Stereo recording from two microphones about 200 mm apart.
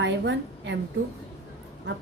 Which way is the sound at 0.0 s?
60° right (ahead or behind).